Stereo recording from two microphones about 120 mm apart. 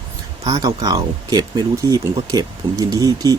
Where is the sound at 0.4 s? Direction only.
30° right (ahead or behind).